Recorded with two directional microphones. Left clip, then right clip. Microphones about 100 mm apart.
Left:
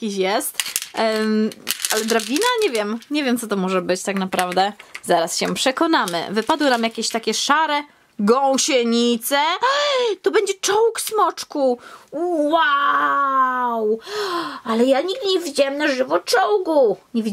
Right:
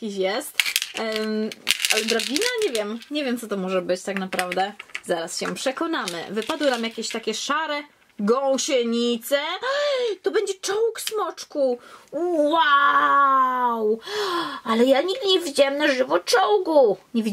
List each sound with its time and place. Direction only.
0.0 s speech: 35° left (ahead or behind)
0.9 s speech: 45° left (ahead or behind)
1.7 s crumpling: 5° left (ahead or behind)
2.7 s speech: 45° left (ahead or behind)
4.3 s speech: 10° left (ahead or behind)
4.6 s speech: 35° left (ahead or behind); by 11.7 s 50° left (ahead or behind)
12.1 s child singing: 25° left (ahead or behind)
12.4 s speech: centre (ahead or behind)